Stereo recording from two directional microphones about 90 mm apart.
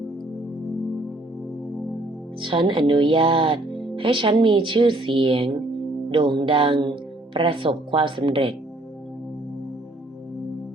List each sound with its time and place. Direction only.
2.4 s speech: 65° right (ahead or behind)